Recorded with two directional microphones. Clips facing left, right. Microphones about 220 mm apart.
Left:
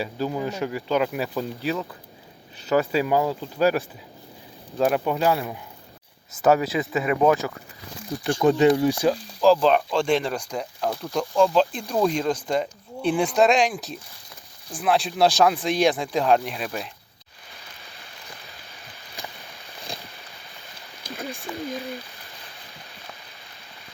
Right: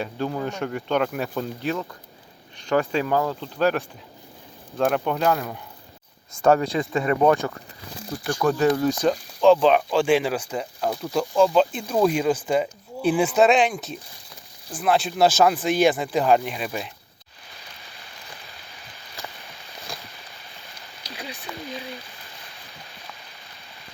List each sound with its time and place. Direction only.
0.0 s speech: 5° left (ahead or behind)
8.3 s speech: 25° left (ahead or behind)
9.0 s speech: centre (ahead or behind)
21.0 s a sound: 50° left (ahead or behind)
21.7 s speech: 45° left (ahead or behind)